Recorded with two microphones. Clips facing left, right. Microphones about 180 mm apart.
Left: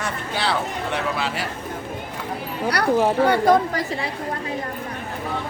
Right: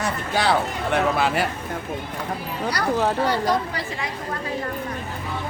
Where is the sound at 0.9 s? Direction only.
55° right (ahead or behind).